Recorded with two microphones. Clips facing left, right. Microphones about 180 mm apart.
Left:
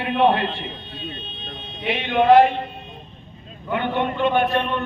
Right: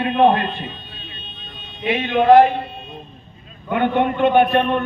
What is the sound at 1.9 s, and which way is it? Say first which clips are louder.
Speech: right 2 dB; 50° right (ahead or behind).